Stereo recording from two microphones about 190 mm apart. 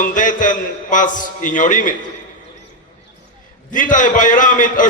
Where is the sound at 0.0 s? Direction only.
45° left (ahead or behind).